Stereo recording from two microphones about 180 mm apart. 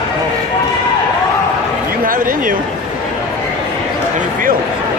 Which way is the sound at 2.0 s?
50° right (ahead or behind).